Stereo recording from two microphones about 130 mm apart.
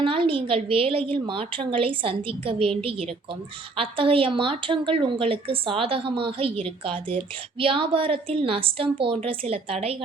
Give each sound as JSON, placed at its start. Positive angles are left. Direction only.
{"t": 0.0, "sound": "a woman's voice", "side_deg": -40}